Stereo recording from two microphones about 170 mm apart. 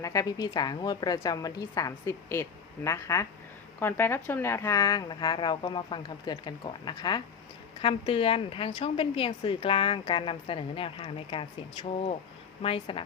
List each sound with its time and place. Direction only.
0.0 s a woman's voice: 20° left (ahead or behind)